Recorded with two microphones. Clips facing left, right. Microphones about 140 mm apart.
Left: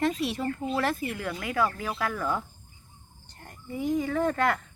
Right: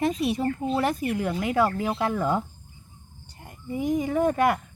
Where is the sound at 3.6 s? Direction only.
20° right (ahead or behind).